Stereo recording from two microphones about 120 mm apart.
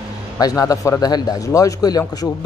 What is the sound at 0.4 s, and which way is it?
A man's voice, 30° left (ahead or behind).